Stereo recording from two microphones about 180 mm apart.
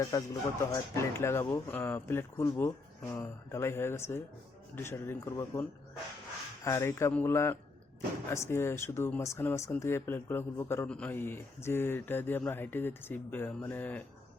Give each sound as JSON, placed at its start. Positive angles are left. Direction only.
{"t": 0.0, "sound": "speech", "side_deg": 20}
{"t": 6.7, "sound": "speech", "side_deg": 15}